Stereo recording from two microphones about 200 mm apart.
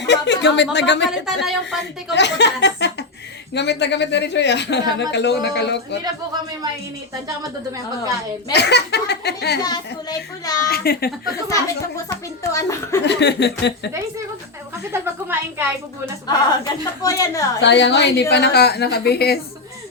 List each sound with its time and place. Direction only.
0.0 s a woman's voice: 60° left (ahead or behind)
1.1 s a woman's voice: centre (ahead or behind)
2.1 s a woman's voice: 60° left (ahead or behind)
8.5 s a woman's voice: 55° left (ahead or behind)
9.6 s speech: 20° left (ahead or behind)
10.7 s a woman's voice: 50° left (ahead or behind)
12.4 s a child's voice: 15° left (ahead or behind)
13.1 s a woman's voice: 60° left (ahead or behind)
14.9 s a woman's voice: 10° right (ahead or behind)
16.2 s speech: 20° left (ahead or behind)
17.6 s a woman's voice: 60° left (ahead or behind)